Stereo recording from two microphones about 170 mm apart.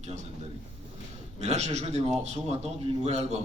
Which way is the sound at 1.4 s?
40° right (ahead or behind).